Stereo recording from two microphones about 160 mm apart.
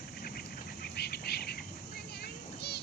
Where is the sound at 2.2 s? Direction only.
90° left.